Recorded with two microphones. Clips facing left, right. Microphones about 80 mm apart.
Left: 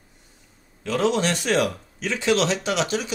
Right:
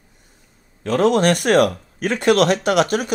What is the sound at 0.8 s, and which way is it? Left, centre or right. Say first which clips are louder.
Speech: right 6 dB; right.